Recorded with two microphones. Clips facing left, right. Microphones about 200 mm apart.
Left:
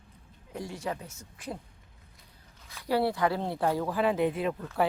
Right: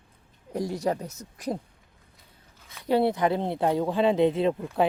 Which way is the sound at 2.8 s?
20° right (ahead or behind).